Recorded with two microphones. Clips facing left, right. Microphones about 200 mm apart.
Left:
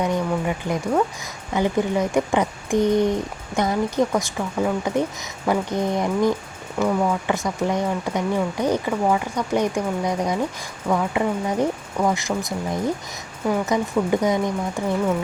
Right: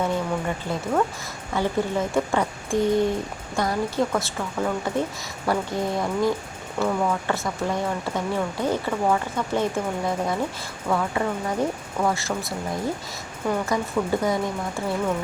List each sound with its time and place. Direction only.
0.0 s a sound: 15° left (ahead or behind)
1.5 s speech: 15° left (ahead or behind)
13.7 s speech: 20° left (ahead or behind)